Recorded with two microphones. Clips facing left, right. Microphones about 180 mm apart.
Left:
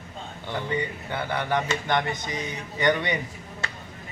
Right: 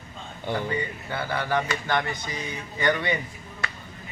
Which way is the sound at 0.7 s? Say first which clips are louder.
Left 1 dB; 20° left (ahead or behind).